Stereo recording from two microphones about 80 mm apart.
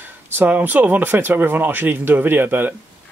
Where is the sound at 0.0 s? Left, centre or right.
Right.